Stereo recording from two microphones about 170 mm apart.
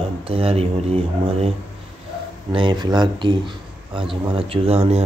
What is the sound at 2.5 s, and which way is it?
Speech, 30° right (ahead or behind).